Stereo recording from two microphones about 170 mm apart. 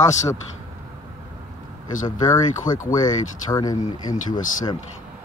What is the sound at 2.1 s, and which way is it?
Speech, 20° left (ahead or behind).